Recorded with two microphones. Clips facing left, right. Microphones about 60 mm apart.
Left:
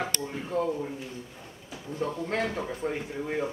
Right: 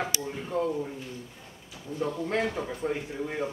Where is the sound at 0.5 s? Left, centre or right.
Centre.